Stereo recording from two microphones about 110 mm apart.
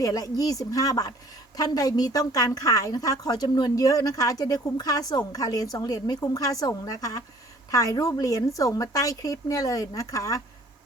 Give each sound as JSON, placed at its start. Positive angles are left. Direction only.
{"t": 0.0, "sound": "a woman's voice", "side_deg": 35}